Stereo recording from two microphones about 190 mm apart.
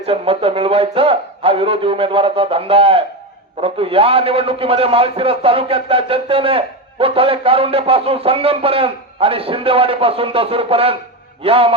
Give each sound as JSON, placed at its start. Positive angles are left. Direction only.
{"t": 0.0, "sound": "a man's voice", "side_deg": -30}